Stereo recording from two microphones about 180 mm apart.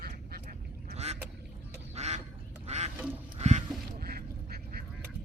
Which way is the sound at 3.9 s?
55° right (ahead or behind).